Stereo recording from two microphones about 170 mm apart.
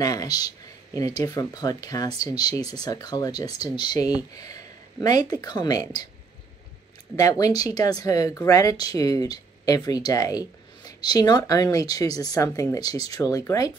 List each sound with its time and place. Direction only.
0.0 s speech: 20° left (ahead or behind)
7.2 s speech: 20° left (ahead or behind)